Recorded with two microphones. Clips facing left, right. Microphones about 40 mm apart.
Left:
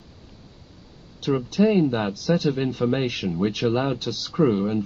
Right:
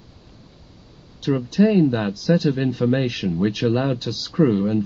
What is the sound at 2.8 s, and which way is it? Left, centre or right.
Speech, centre.